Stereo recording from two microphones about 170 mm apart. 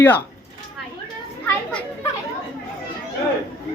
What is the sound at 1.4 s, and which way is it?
Speech, 10° left (ahead or behind).